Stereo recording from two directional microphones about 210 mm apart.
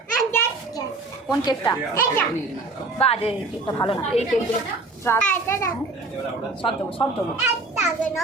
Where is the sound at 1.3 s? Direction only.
15° left (ahead or behind).